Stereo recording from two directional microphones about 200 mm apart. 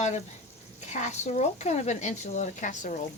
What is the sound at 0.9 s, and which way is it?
Speech, 35° left (ahead or behind).